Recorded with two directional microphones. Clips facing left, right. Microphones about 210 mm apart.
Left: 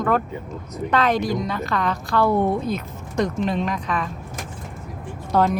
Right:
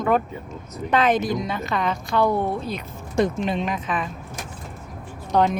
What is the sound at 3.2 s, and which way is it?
Speech, centre (ahead or behind).